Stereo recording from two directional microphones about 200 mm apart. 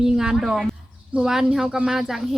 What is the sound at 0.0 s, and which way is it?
A woman's voice, 5° right (ahead or behind).